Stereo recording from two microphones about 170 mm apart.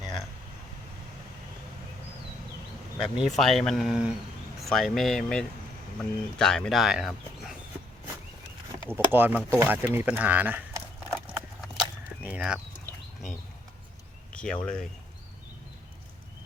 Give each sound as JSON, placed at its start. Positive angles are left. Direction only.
{"t": 3.0, "sound": "speech", "side_deg": 0}
{"t": 8.9, "sound": "speech", "side_deg": -10}
{"t": 12.2, "sound": "speech", "side_deg": -5}
{"t": 14.3, "sound": "speech", "side_deg": 5}